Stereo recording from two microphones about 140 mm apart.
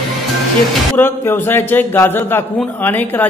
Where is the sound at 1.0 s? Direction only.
15° left (ahead or behind).